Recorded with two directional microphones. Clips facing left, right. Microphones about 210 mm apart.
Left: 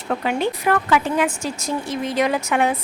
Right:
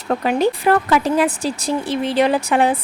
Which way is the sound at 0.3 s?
40° right (ahead or behind).